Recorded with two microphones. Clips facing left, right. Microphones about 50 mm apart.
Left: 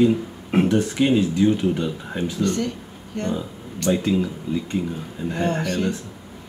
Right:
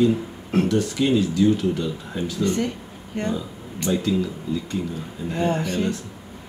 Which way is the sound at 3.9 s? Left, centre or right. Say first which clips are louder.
Left 2 dB; left.